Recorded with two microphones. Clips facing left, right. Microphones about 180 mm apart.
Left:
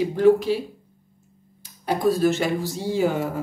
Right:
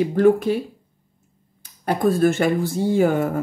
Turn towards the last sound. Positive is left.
turn(degrees=-55)  # may be behind; listen again after turning